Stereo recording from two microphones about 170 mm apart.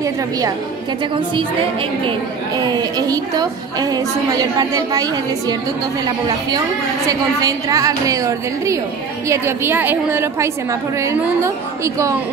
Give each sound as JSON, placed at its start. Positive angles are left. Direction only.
{"t": 2.0, "sound": "a woman's voice", "side_deg": -25}